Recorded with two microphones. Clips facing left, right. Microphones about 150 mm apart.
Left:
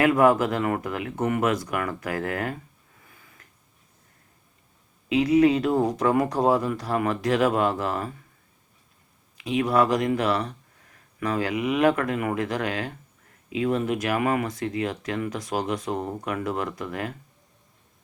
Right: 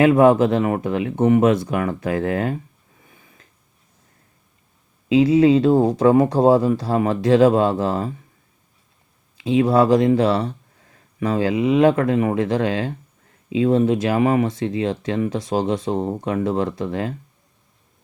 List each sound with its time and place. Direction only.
0.0 s speech: 25° right (ahead or behind)
3.0 s a sound: 25° right (ahead or behind)
5.0 s speech: 30° right (ahead or behind)
9.4 s speech: 30° right (ahead or behind)